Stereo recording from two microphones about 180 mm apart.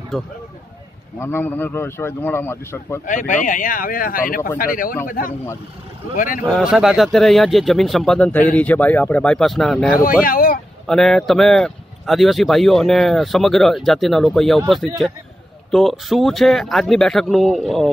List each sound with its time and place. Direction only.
1.2 s speech: 10° left (ahead or behind)
3.1 s speech: 45° left (ahead or behind)
6.5 s speech: 5° right (ahead or behind)
10.2 s a sound: 55° left (ahead or behind)
10.9 s speech: centre (ahead or behind)
15.7 s speech: centre (ahead or behind)